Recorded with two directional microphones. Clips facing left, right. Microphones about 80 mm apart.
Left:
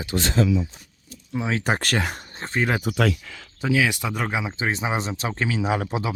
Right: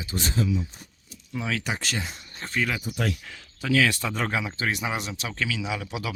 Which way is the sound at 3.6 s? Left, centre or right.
Centre.